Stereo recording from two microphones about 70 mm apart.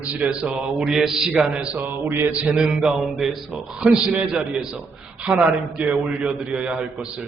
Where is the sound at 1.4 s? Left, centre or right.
Centre.